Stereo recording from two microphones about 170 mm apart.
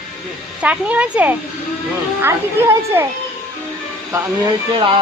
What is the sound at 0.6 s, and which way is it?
Speech, 10° right (ahead or behind).